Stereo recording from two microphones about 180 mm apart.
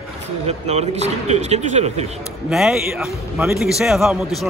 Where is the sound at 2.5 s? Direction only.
Centre (ahead or behind).